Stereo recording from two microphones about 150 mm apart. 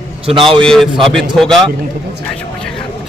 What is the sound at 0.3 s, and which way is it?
Speech, 35° right (ahead or behind).